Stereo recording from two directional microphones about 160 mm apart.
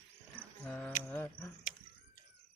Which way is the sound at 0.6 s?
10° left (ahead or behind).